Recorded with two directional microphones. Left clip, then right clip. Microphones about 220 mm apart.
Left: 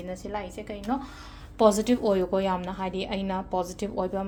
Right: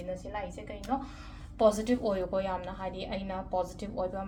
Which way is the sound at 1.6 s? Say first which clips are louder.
Left 4 dB; 40° left (ahead or behind).